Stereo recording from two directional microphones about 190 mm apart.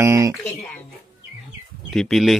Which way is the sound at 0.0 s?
15° right (ahead or behind).